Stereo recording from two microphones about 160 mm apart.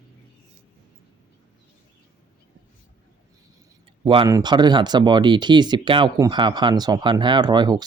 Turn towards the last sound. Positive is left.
turn(degrees=-25)  # may be behind; listen again after turning